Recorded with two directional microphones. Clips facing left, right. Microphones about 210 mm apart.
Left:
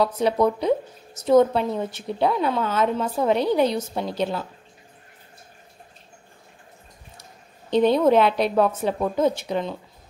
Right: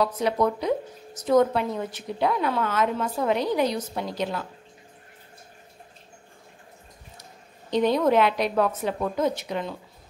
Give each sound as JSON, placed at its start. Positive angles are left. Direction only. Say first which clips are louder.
{"t": 0.0, "sound": "a woman's voice", "louder": "left 3 dB", "side_deg": 30}
{"t": 7.7, "sound": "a woman's voice", "louder": "left 3 dB", "side_deg": 30}